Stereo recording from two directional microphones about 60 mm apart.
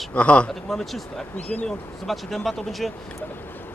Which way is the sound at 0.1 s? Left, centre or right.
Left.